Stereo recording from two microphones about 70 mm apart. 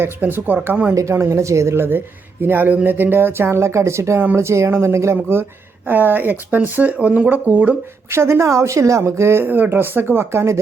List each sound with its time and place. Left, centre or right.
0.0 s speech: right
1.1 s a woman's voice: right
5.1 s speech: right
8.1 s speech: right